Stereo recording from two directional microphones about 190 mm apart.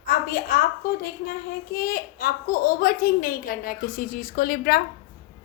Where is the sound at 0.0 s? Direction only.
50° left (ahead or behind).